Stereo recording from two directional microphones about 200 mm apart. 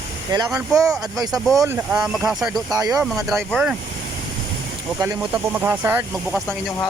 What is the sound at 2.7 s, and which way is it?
Speech, 20° right (ahead or behind).